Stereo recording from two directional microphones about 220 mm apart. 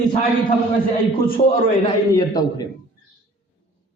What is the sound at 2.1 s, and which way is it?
Speech, 15° left (ahead or behind).